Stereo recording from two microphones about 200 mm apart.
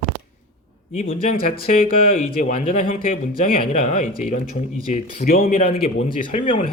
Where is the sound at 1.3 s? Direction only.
45° left (ahead or behind).